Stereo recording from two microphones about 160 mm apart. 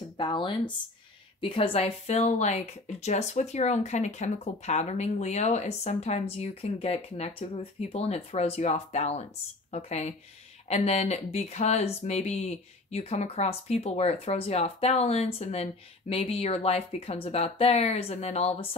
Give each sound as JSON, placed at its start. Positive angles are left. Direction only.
{"t": 0.2, "sound": "speech", "side_deg": 30}